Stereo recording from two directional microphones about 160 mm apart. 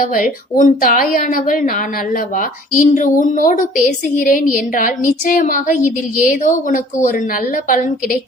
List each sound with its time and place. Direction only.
0.1 s a woman's voice: 55° left (ahead or behind)